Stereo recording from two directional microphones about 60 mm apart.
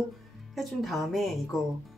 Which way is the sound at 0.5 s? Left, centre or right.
Centre.